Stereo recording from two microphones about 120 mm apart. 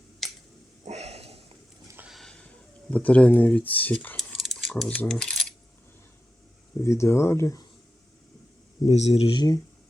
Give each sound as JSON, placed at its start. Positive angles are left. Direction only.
{"t": 0.2, "sound": "finger snapping", "side_deg": 0}
{"t": 0.9, "sound": "a sound", "side_deg": -65}
{"t": 2.0, "sound": "a sound", "side_deg": 0}
{"t": 2.9, "sound": "speech", "side_deg": 10}
{"t": 4.2, "sound": "a sound", "side_deg": 0}
{"t": 5.0, "sound": "coin", "side_deg": 5}
{"t": 6.8, "sound": "speech", "side_deg": 25}
{"t": 8.8, "sound": "speech", "side_deg": 65}
{"t": 9.3, "sound": "speech", "side_deg": 35}